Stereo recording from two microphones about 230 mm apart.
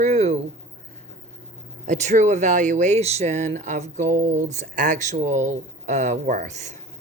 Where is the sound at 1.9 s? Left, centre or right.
Right.